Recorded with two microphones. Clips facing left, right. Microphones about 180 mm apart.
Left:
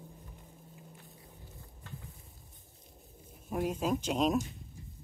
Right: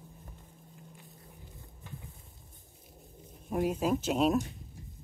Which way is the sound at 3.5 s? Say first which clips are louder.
Right 3 dB; 5° right (ahead or behind).